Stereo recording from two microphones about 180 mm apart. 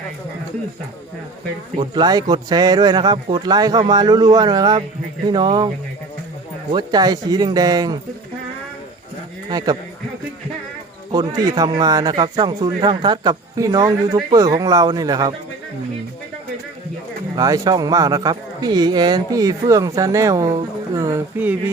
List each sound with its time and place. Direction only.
2.0 s a man's voice: 20° right (ahead or behind)
6.7 s a man's voice: 20° right (ahead or behind)
9.5 s a man's voice: 20° right (ahead or behind)
11.1 s a man's voice: 20° right (ahead or behind)
17.3 s a man's voice: 20° right (ahead or behind)